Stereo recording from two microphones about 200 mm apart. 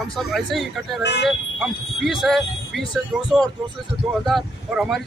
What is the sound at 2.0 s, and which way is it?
Speech, centre (ahead or behind).